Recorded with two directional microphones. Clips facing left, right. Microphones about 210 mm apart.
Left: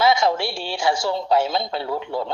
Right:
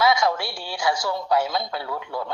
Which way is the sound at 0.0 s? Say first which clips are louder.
Left 2 dB; 25° left (ahead or behind).